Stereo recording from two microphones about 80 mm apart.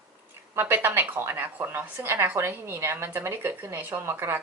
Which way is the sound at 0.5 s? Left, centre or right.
Right.